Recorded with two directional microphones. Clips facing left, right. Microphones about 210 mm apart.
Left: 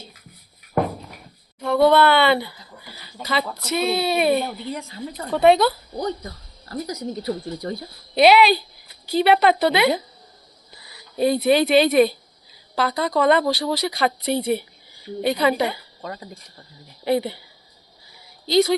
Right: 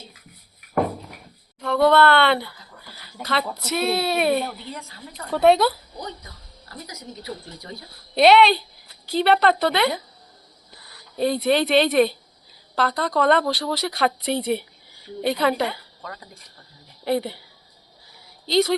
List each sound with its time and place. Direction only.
1.6 s a sound: 5° left (ahead or behind)
3.7 s speech: 5° right (ahead or behind)
4.7 s speech: 15° left (ahead or behind)
5.3 s speech: centre (ahead or behind)
6.0 s speech: 40° left (ahead or behind)
7.9 s speech: centre (ahead or behind)
16.0 s speech: 25° left (ahead or behind)
17.0 s speech: centre (ahead or behind)
18.4 s speech: 5° left (ahead or behind)